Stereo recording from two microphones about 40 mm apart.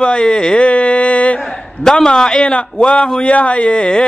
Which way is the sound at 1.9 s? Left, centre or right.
Centre.